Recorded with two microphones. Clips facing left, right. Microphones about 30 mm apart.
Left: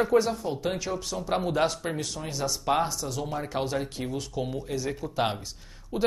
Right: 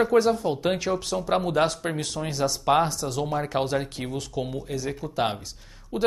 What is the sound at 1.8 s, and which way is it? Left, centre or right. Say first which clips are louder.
Speech: right 3 dB; centre.